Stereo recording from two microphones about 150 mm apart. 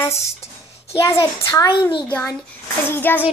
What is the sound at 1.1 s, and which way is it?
Speech, 30° left (ahead or behind).